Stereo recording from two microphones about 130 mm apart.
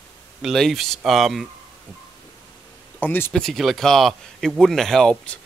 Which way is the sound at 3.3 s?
5° left (ahead or behind).